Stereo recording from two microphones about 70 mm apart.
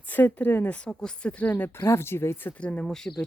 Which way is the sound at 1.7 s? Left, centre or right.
Left.